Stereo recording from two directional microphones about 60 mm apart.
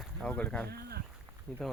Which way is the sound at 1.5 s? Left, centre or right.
Centre.